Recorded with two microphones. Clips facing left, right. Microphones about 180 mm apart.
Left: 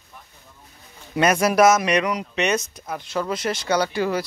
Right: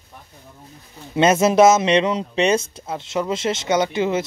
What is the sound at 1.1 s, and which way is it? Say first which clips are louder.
A man's voice: right 3 dB; 25° right (ahead or behind).